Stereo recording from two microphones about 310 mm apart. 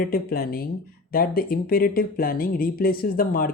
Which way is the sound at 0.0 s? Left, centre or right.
Left.